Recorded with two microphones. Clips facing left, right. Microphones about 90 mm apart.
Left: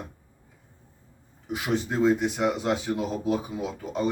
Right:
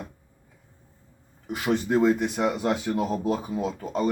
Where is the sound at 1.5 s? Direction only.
55° right (ahead or behind).